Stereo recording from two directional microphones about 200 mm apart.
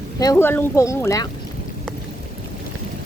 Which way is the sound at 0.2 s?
15° left (ahead or behind).